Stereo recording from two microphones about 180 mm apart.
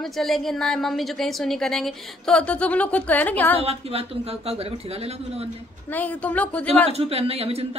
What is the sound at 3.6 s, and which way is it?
Speech, 35° right (ahead or behind).